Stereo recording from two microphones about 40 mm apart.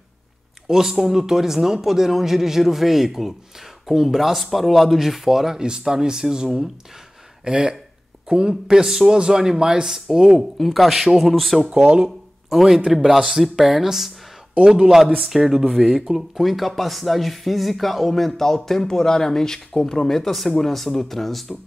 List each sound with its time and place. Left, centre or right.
0.7 s a man's voice: centre
5.6 s a man's voice: centre
10.6 s speech: centre
12.0 s speech: centre
14.5 s a man's voice: right
15.2 s a man's voice: centre